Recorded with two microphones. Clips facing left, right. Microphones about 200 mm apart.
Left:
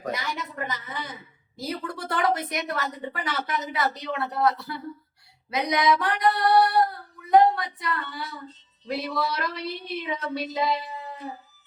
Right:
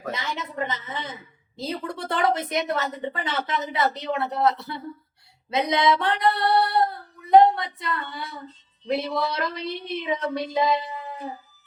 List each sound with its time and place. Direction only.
0.1 s a woman's voice: 25° right (ahead or behind)